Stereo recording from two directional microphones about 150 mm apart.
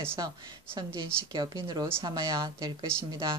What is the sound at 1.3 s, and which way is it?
A woman's voice, 30° right (ahead or behind).